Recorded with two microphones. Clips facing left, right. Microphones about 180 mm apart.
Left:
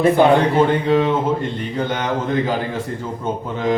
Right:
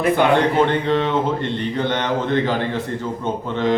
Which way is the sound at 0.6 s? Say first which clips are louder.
Left 2 dB; 10° left (ahead or behind).